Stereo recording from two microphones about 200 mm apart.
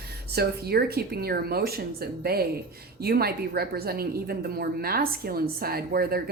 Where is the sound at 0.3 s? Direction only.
55° right (ahead or behind).